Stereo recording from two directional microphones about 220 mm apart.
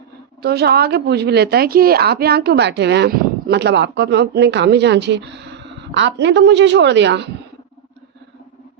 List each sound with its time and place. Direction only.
0.4 s a woman's voice: 45° right (ahead or behind)